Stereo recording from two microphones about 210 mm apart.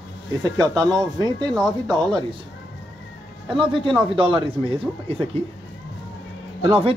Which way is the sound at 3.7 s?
25° right (ahead or behind).